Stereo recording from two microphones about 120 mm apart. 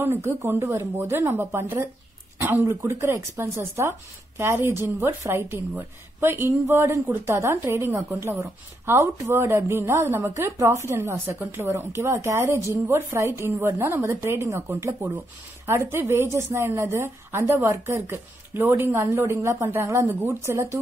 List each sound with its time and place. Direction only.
0.0 s speech: 20° right (ahead or behind)